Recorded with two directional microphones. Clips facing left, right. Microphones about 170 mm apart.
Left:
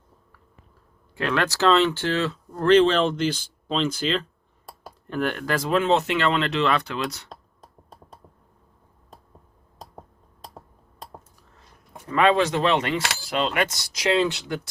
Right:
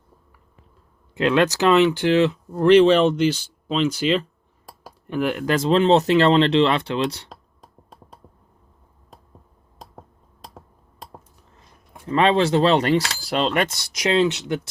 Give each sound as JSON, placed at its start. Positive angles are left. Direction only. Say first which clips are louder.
{"t": 1.1, "sound": "speech", "louder": "right 6 dB", "side_deg": -20}
{"t": 12.0, "sound": "speech", "louder": "right 2 dB", "side_deg": -25}